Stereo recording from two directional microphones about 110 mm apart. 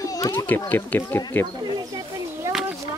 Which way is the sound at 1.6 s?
40° right (ahead or behind).